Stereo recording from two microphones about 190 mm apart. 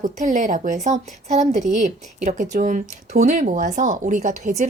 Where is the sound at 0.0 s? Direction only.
40° right (ahead or behind).